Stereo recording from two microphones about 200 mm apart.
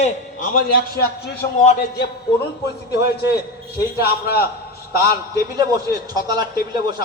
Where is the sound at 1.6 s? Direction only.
35° left (ahead or behind).